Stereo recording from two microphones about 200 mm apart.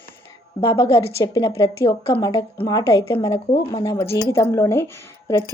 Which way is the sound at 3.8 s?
15° left (ahead or behind).